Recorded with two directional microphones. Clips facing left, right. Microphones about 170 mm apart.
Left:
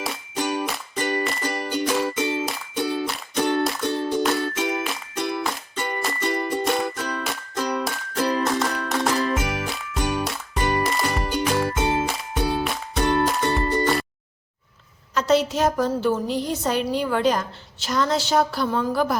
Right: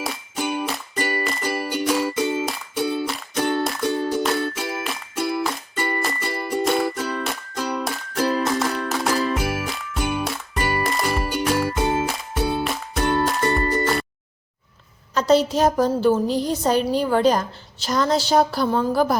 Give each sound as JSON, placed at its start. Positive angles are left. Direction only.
{"t": 0.0, "sound": "music", "side_deg": -5}
{"t": 15.1, "sound": "a woman's voice", "side_deg": -35}